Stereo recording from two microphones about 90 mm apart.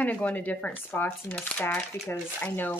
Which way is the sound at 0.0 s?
15° left (ahead or behind).